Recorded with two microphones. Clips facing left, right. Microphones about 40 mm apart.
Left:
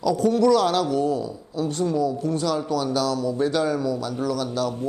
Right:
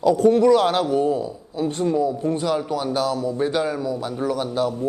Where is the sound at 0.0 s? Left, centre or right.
Right.